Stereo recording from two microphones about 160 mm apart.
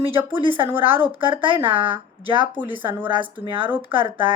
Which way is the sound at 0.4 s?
35° right (ahead or behind).